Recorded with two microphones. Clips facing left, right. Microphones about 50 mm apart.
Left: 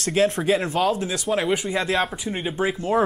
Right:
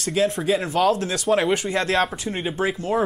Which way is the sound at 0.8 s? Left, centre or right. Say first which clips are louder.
Right 2 dB; centre.